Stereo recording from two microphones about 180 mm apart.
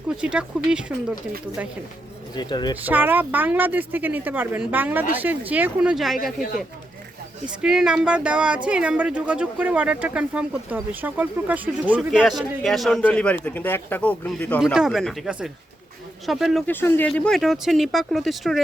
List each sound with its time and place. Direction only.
0.1 s speech: 5° right (ahead or behind)
2.3 s speech: 25° left (ahead or behind)
2.8 s speech: 10° right (ahead or behind)
7.6 s a man's voice: 5° right (ahead or behind)
14.6 s speech: 5° right (ahead or behind)
16.6 s speech: 10° left (ahead or behind)